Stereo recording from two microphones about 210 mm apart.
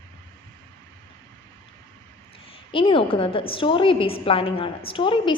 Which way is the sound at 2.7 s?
25° left (ahead or behind).